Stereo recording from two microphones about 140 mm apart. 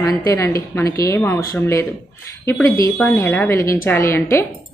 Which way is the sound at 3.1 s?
20° left (ahead or behind).